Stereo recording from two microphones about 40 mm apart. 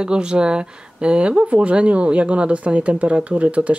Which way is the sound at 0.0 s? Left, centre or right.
Right.